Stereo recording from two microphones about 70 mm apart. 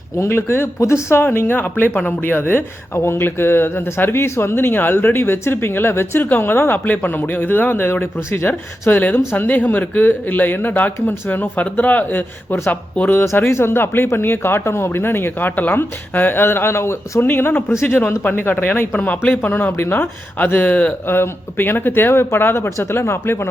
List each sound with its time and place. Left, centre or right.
0.2 s speech: left